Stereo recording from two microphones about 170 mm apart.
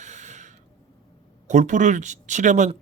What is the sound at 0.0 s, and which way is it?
Mechanisms, 45° right (ahead or behind).